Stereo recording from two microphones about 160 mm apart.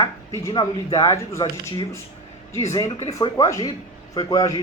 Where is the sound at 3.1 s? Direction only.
20° left (ahead or behind).